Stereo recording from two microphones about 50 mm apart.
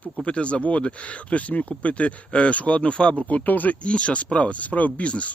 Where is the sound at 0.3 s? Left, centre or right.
Left.